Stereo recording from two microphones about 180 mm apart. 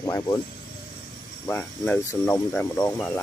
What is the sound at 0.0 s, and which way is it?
Speech, 20° left (ahead or behind).